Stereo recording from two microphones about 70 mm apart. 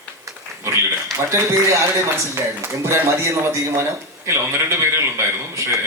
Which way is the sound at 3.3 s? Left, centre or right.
Right.